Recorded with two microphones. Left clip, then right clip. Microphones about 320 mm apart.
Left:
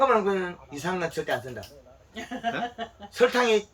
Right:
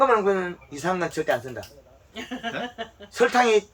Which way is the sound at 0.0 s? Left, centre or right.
Centre.